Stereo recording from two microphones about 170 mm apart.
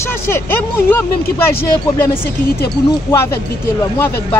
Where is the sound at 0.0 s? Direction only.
15° left (ahead or behind).